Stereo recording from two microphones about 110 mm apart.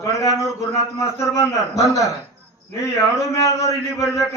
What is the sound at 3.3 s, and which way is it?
Speech, 30° left (ahead or behind).